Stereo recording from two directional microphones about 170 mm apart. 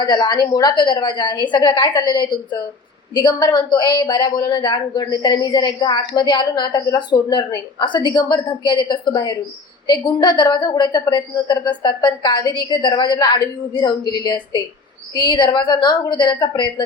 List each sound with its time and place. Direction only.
0.0 s a woman's voice: 25° left (ahead or behind)